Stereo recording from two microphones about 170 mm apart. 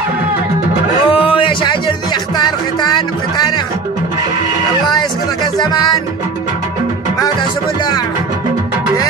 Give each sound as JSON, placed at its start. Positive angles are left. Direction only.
{"t": 1.0, "sound": "music", "side_deg": 30}
{"t": 5.6, "sound": "music", "side_deg": 25}